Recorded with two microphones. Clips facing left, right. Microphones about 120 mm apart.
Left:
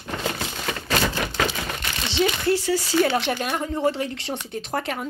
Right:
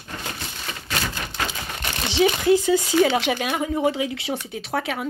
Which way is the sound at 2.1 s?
10° right (ahead or behind).